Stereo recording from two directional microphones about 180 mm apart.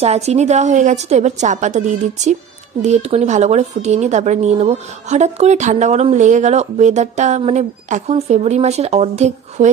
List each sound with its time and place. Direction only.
0.0 s a woman's voice: 35° right (ahead or behind)